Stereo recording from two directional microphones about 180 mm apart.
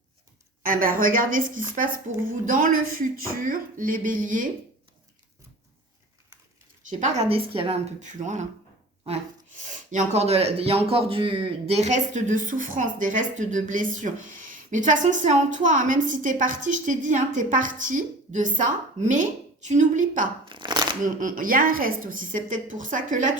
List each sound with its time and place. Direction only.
0.6 s speech: 50° right (ahead or behind)
6.9 s a woman's voice: 35° right (ahead or behind)
9.6 s speech: 40° right (ahead or behind)
20.4 s shuffling cards: 25° right (ahead or behind)
21.0 s speech: 45° right (ahead or behind)